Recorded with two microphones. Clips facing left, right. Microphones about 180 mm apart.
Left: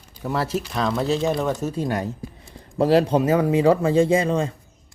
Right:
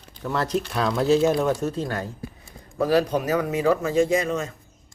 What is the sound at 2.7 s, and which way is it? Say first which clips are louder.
Speech: left 3 dB; 25° left (ahead or behind).